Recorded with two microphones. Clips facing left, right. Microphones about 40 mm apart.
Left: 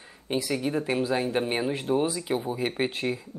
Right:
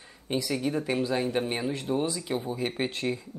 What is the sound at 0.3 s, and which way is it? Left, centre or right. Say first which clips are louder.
Speech: left 1 dB; centre.